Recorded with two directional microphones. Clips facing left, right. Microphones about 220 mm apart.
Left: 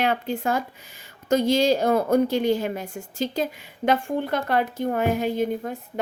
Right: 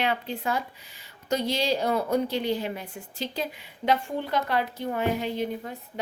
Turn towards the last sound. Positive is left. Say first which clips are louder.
# left 6 dB
turn(degrees=50)  # may be behind; listen again after turning